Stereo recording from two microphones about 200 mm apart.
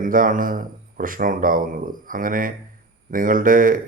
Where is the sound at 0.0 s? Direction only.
40° right (ahead or behind).